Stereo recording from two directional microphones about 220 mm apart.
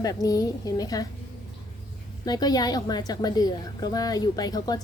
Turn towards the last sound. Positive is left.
turn(degrees=20)  # may be behind; listen again after turning